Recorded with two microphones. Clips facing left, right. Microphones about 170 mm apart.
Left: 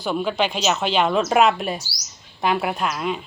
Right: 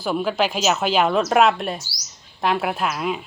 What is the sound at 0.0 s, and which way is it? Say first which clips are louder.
Speech: right 1 dB; 5° right (ahead or behind).